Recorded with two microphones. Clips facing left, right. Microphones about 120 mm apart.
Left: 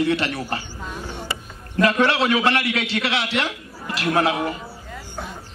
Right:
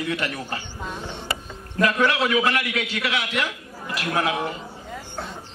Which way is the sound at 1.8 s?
30° left (ahead or behind).